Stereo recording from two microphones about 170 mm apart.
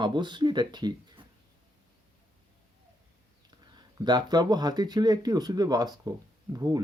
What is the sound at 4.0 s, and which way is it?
Speech, 25° right (ahead or behind).